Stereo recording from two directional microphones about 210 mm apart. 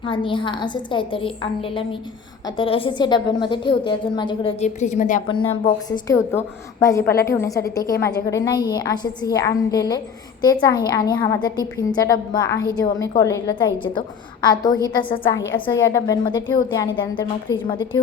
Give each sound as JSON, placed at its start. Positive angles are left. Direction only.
{"t": 0.1, "sound": "a woman's voice", "side_deg": 25}
{"t": 4.6, "sound": "a woman's voice", "side_deg": 35}
{"t": 5.3, "sound": "a woman's voice", "side_deg": 25}